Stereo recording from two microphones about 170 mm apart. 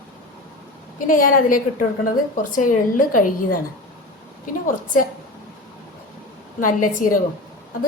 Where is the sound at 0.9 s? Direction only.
55° left (ahead or behind).